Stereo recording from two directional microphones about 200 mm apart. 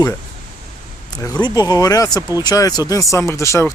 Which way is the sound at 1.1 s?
20° left (ahead or behind).